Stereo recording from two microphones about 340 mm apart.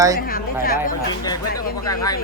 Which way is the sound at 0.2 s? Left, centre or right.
Left.